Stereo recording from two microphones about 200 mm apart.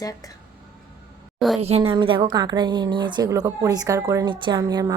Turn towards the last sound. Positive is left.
turn(degrees=-20)  # may be behind; listen again after turning